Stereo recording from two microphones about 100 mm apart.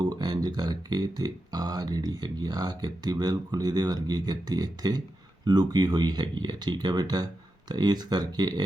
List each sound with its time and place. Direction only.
0.0 s speech: 45° right (ahead or behind)